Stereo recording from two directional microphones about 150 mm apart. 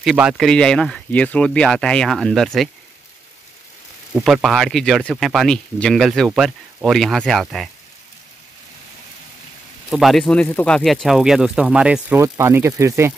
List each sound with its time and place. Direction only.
0.0 s speech: 5° right (ahead or behind)
4.1 s speech: 5° right (ahead or behind)
9.8 s speech: centre (ahead or behind); by 13.1 s 20° right (ahead or behind)